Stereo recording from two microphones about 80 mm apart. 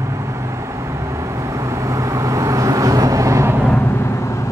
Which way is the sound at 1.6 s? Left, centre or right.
Right.